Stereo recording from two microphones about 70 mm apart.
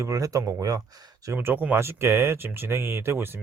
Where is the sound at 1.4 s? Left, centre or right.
Right.